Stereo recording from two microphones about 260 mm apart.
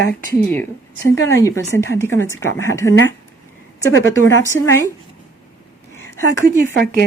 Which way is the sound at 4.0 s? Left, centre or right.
Left.